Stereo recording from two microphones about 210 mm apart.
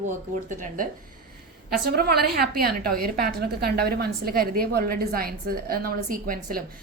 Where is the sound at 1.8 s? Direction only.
45° right (ahead or behind).